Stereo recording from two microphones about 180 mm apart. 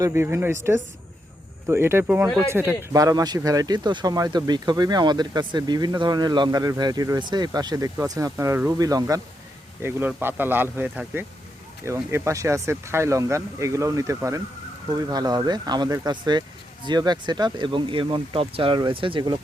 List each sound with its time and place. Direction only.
0.0 s speech: 15° right (ahead or behind)